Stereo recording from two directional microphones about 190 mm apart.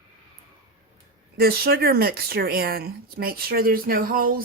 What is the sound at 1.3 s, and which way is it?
Speech, 50° right (ahead or behind).